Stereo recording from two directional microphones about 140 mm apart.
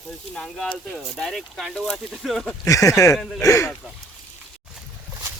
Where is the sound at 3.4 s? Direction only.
20° left (ahead or behind).